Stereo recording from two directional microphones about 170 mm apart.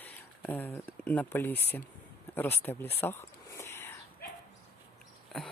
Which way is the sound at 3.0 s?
15° left (ahead or behind).